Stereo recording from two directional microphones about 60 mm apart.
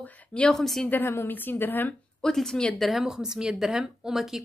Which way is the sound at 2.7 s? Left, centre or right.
Centre.